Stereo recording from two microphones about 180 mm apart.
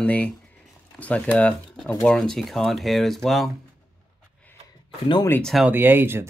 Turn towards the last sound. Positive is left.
turn(degrees=-10)  # may be behind; listen again after turning